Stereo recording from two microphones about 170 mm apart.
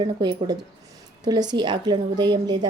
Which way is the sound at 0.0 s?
25° right (ahead or behind).